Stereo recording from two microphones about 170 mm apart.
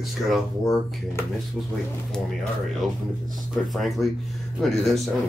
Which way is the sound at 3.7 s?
Centre (ahead or behind).